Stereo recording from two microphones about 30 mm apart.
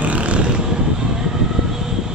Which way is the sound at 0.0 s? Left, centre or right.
Right.